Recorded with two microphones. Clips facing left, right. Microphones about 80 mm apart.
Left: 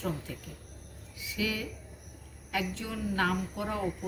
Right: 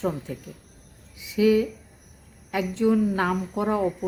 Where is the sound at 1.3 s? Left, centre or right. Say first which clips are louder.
Right 14 dB; right.